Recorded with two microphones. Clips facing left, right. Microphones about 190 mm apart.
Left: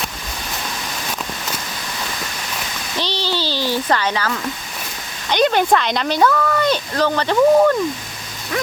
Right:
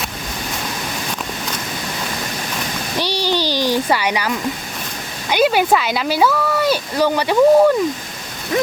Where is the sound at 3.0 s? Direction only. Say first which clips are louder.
Right 3 dB; 10° right (ahead or behind).